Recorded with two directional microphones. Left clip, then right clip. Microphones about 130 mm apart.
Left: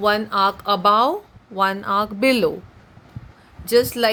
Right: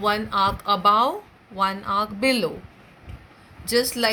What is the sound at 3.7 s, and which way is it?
Speech, 85° left.